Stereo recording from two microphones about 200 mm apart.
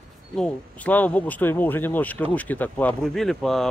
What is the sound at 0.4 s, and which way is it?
Speech, 10° left (ahead or behind).